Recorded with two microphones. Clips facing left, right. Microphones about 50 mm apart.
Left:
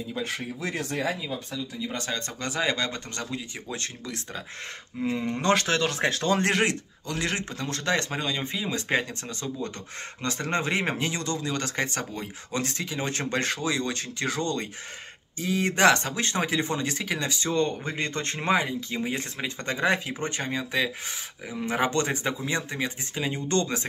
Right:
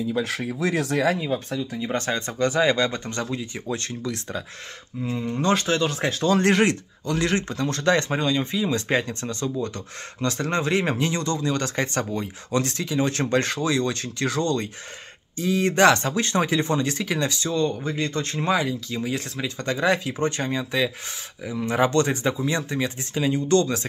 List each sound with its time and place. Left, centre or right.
0.6 s speech: right
1.2 s speech: right
2.3 s a man's voice: centre
3.7 s speech: centre
5.0 s speech: left
5.4 s speech: left
5.9 s speech: left
6.4 s a man's voice: centre
11.1 s a man's voice: centre
12.5 s speech: centre
17.5 s speech: left